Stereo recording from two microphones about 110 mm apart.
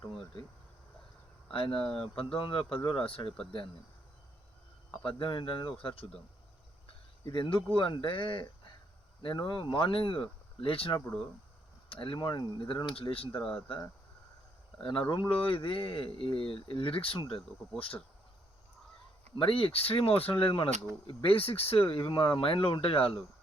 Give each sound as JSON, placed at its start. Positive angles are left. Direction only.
{"t": 1.5, "sound": "speech", "side_deg": 55}
{"t": 5.0, "sound": "speech", "side_deg": 50}
{"t": 7.3, "sound": "speech", "side_deg": 45}
{"t": 14.8, "sound": "speech", "side_deg": 55}
{"t": 19.4, "sound": "speech", "side_deg": 55}